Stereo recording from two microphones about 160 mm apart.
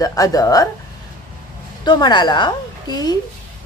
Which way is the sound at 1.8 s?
25° left (ahead or behind).